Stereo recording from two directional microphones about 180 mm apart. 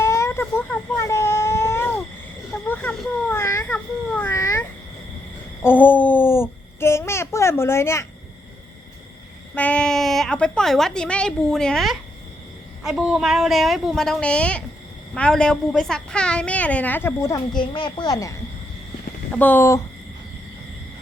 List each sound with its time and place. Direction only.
0.0 s baby cry: 15° left (ahead or behind)
5.6 s babbling: 10° left (ahead or behind)
9.6 s a woman's voice: 5° left (ahead or behind)
17.6 s a woman's voice: 25° left (ahead or behind)
19.3 s a woman's voice: 10° left (ahead or behind)